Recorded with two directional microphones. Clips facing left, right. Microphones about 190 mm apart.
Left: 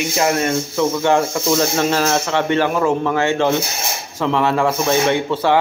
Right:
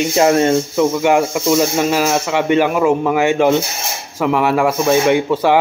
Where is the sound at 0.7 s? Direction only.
15° right (ahead or behind).